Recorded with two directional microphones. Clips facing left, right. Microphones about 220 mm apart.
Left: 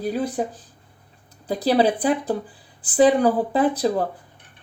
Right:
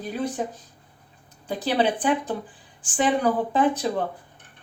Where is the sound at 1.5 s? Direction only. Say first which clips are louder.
Left 4 dB; 35° left (ahead or behind).